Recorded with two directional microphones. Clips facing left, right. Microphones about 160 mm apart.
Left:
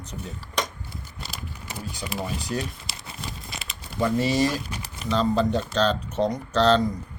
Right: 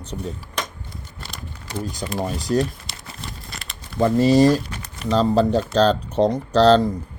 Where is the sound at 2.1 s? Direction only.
40° right (ahead or behind).